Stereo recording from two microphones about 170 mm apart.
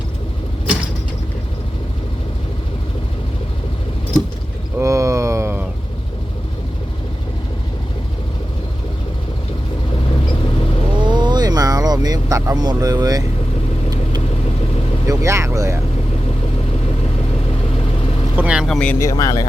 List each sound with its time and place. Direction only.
4.8 s a sound: 20° right (ahead or behind)
10.9 s vehicle: 25° right (ahead or behind)
15.0 s vehicle: 15° right (ahead or behind)
18.3 s vehicle: 5° right (ahead or behind)
19.0 s speech: 20° left (ahead or behind)